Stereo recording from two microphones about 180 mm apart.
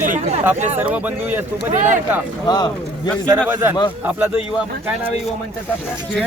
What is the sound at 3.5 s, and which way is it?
Speech, 10° right (ahead or behind).